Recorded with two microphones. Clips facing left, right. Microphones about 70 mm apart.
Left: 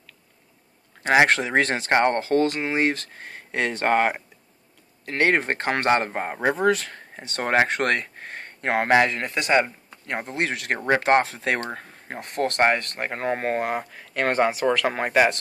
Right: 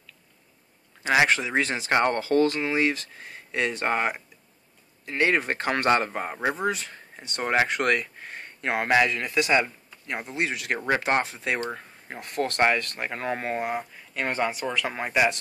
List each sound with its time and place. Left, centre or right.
1.0 s speech: left
1.3 s speech: left
2.0 s speech: left
2.9 s speech: left
6.5 s speech: left
13.9 s speech: left
14.5 s speech: left